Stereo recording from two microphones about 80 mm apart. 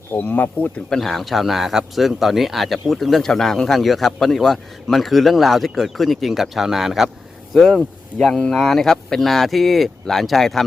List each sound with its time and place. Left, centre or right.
0.1 s speech: left
0.9 s speech: centre